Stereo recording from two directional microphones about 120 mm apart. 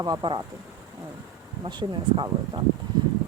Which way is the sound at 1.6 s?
40° right (ahead or behind).